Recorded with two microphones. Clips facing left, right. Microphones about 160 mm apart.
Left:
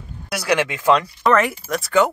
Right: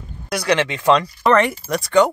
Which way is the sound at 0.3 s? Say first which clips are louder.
Right 1 dB; 5° left (ahead or behind).